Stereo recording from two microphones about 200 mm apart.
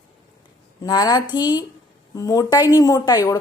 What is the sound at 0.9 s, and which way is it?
A woman's voice, 20° left (ahead or behind).